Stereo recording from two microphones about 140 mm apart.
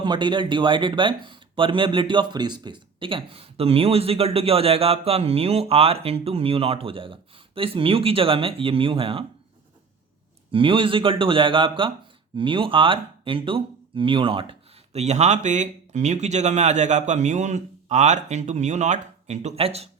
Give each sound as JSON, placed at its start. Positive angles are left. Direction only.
{"t": 0.0, "sound": "speech", "side_deg": -35}
{"t": 10.5, "sound": "speech", "side_deg": -40}
{"t": 14.9, "sound": "speech", "side_deg": -55}